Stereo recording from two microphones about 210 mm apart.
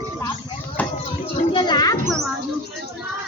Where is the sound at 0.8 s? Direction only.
5° left (ahead or behind).